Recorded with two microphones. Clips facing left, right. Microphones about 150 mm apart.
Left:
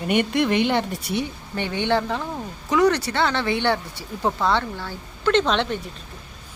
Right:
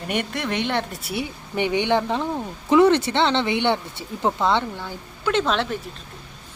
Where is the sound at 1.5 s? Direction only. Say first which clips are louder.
Right 2 dB; 15° right (ahead or behind).